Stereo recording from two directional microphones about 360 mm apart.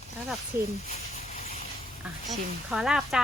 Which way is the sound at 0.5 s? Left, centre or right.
Centre.